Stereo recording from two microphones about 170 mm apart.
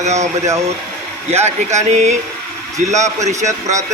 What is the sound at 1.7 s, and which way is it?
Speech, 45° right (ahead or behind).